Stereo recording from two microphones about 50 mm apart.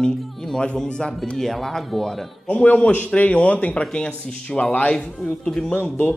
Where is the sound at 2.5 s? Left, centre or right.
Left.